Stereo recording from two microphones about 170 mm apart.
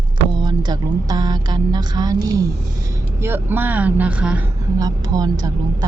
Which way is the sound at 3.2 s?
10° right (ahead or behind).